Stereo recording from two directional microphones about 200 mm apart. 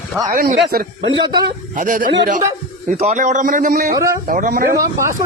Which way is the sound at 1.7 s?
40° right (ahead or behind).